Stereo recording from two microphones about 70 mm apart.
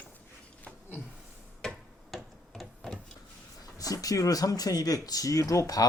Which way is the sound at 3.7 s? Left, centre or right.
Left.